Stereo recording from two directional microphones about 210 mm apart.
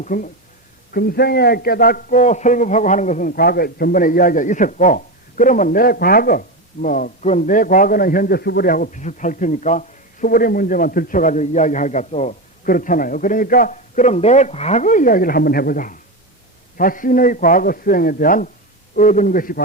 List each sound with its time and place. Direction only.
0.0 s a man's voice: 40° left (ahead or behind)